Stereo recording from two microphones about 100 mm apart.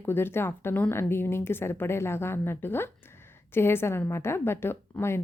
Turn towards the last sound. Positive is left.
turn(degrees=25)  # may be behind; listen again after turning